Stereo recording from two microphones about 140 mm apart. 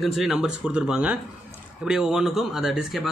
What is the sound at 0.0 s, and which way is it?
Speech, centre (ahead or behind).